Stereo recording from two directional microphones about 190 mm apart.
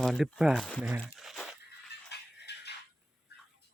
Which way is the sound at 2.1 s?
60° left (ahead or behind).